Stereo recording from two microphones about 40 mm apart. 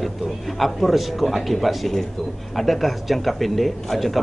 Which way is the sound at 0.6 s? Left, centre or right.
Centre.